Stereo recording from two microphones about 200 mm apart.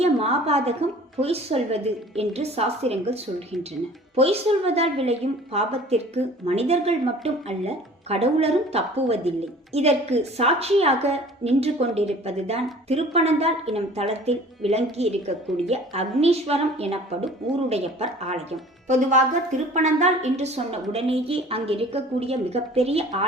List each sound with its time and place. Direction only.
0.0 s a woman's voice: 30° right (ahead or behind)